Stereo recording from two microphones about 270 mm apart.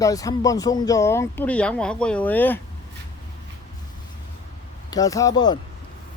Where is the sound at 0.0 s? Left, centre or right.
Centre.